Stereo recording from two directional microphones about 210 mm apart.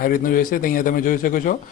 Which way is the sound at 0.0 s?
40° left (ahead or behind).